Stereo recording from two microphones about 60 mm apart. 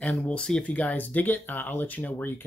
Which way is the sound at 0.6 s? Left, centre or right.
Left.